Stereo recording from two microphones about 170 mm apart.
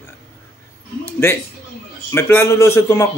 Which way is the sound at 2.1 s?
15° left (ahead or behind).